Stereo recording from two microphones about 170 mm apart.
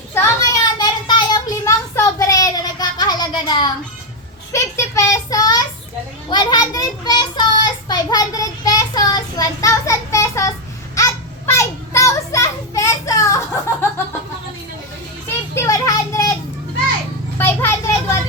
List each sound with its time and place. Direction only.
0.6 s child singing: 25° left (ahead or behind)
6.3 s a child's voice: 25° left (ahead or behind)
10.9 s children playing: 20° left (ahead or behind)
15.3 s children playing: 15° left (ahead or behind)
17.3 s vehicle: 15° left (ahead or behind)